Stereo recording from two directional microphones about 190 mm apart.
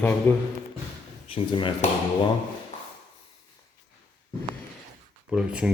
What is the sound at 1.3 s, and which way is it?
Speech, 25° left (ahead or behind).